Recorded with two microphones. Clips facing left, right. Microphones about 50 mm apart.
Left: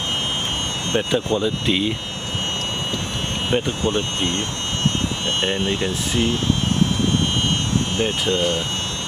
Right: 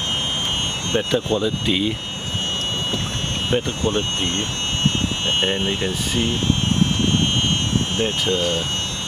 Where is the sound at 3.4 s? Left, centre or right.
Centre.